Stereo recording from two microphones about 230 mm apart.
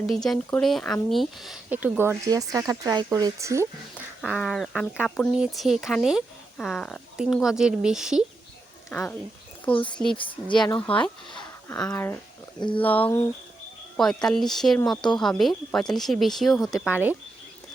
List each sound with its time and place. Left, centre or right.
0.2 s speech: centre
4.2 s speech: centre
9.7 s speech: left
10.8 s speech: centre